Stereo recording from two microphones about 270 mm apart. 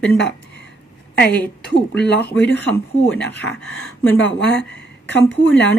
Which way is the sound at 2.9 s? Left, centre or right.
Centre.